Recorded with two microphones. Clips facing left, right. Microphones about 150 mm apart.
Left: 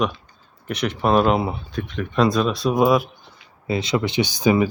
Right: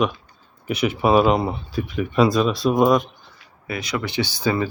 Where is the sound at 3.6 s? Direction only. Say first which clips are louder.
Left 5 dB; 25° left (ahead or behind).